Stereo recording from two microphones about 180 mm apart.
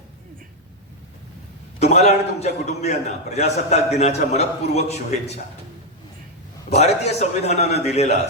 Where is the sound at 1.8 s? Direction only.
40° left (ahead or behind).